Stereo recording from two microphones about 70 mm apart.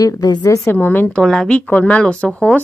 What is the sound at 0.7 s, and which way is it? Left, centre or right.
Speech, left.